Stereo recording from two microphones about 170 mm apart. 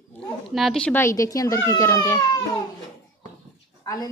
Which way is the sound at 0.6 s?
5° left (ahead or behind).